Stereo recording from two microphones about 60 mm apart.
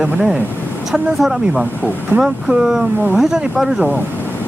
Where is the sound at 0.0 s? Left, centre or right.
Right.